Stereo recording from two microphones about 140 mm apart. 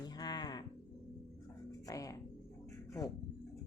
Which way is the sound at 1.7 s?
25° left (ahead or behind).